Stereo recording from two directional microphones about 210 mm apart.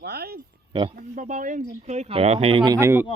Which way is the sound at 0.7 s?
25° right (ahead or behind).